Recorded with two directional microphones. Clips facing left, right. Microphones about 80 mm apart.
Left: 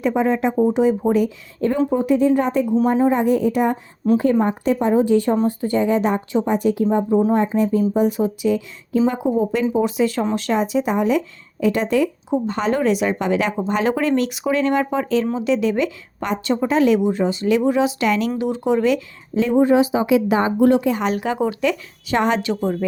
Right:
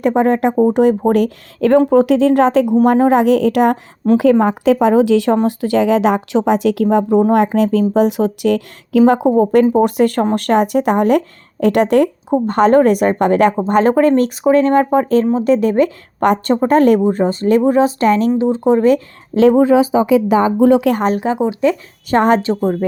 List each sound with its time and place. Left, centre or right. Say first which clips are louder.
0.0 s a woman's voice: right 5 dB; right
19.3 s speech: right 7 dB; right
20.9 s speech: right 5 dB; right
21.3 s speech: right 4 dB; centre
21.6 s speech: right 6 dB; right